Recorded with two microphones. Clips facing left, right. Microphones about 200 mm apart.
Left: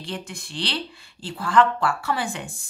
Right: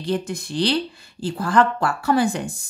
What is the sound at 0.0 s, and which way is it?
A woman's voice, 40° right (ahead or behind).